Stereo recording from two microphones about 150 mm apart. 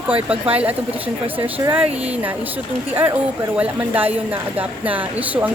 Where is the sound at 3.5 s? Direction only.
10° right (ahead or behind).